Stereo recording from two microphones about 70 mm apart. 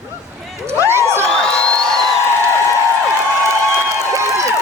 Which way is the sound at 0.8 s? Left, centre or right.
Right.